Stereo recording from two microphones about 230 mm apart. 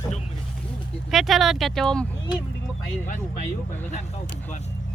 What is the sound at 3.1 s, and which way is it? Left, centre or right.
Speech, left.